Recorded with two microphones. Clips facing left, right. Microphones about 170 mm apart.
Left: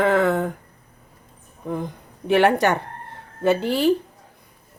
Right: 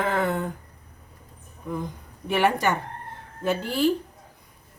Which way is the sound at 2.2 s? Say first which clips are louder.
Left 5 dB; 70° left (ahead or behind).